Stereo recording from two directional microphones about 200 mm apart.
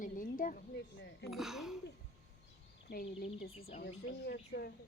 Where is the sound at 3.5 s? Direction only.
30° left (ahead or behind).